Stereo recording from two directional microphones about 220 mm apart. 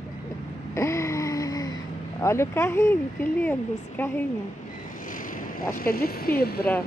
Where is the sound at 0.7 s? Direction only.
15° left (ahead or behind).